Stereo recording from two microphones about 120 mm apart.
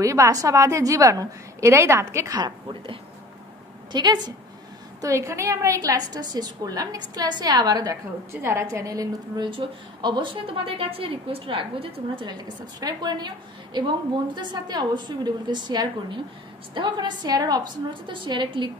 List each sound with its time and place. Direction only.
0.0 s a woman's voice: 25° right (ahead or behind)
5.0 s a woman's voice: 25° right (ahead or behind)
8.3 s a woman's voice: 20° right (ahead or behind)
9.5 s a woman's voice: 45° right (ahead or behind)